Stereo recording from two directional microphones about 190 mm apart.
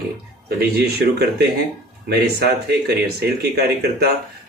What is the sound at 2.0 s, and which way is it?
Speech, 55° right (ahead or behind).